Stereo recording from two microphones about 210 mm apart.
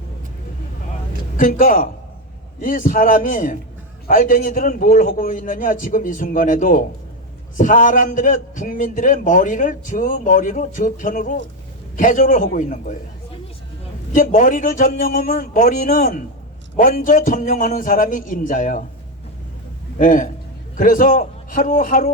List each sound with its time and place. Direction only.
1.4 s a man's voice: 40° left (ahead or behind)
14.1 s a man's voice: 35° left (ahead or behind)
20.0 s a man's voice: 40° left (ahead or behind)